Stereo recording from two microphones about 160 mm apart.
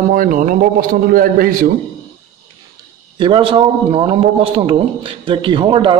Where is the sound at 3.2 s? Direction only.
30° right (ahead or behind).